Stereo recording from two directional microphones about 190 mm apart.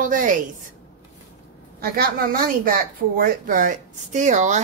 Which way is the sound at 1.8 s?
50° right (ahead or behind).